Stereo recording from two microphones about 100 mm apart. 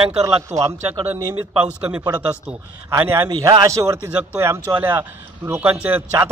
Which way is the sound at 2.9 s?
25° right (ahead or behind).